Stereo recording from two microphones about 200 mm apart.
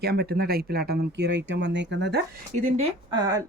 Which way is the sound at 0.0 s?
50° right (ahead or behind).